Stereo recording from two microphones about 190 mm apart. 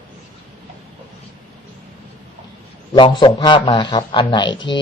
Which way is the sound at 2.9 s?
25° left (ahead or behind).